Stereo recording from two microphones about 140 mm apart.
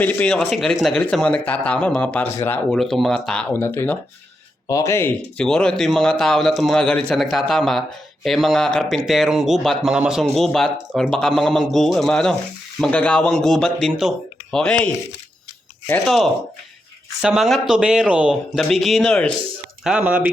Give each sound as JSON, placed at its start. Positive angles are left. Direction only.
{"t": 0.0, "sound": "speech", "side_deg": 10}
{"t": 2.6, "sound": "speech", "side_deg": 0}
{"t": 5.4, "sound": "a man's voice", "side_deg": 5}
{"t": 16.0, "sound": "a man's voice", "side_deg": 0}
{"t": 19.8, "sound": "speech", "side_deg": -10}